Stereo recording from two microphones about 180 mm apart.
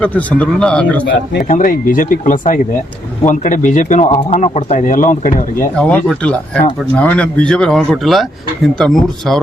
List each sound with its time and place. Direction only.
0.0 s a man's voice: 10° left (ahead or behind)
1.0 s speech: 50° left (ahead or behind)
5.7 s speech: 5° left (ahead or behind)